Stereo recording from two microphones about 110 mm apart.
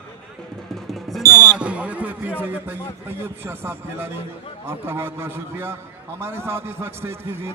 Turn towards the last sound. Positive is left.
turn(degrees=-20)  # may be behind; listen again after turning